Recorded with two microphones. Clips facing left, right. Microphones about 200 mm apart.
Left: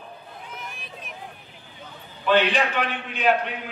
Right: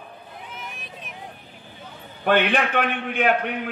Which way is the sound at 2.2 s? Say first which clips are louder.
Right 1 dB; 55° right (ahead or behind).